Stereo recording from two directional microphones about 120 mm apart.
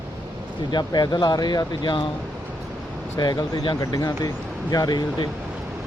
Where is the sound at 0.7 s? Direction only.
35° left (ahead or behind).